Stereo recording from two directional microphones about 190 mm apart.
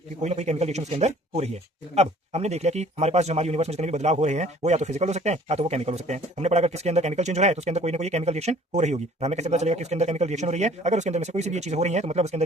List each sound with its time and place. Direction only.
0.2 s speech: 35° right (ahead or behind)